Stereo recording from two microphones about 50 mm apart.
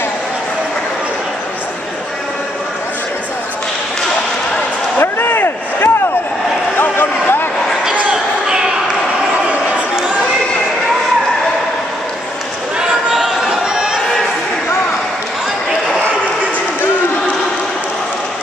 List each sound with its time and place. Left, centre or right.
4.9 s a sound: left
6.8 s vehicle: left
12.7 s chatter: centre